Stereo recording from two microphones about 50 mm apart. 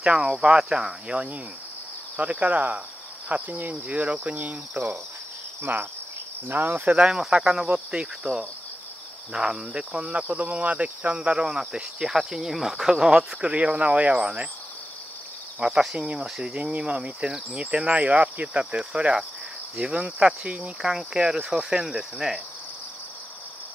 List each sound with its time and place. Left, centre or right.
0.2 s speech: centre; by 2.8 s right
3.3 s cricket: right
7.1 s speech: centre
8.2 s speech: centre
9.3 s speech: centre
11.1 s speech: centre
15.6 s speech: centre
16.7 s speech: right
17.7 s speech: right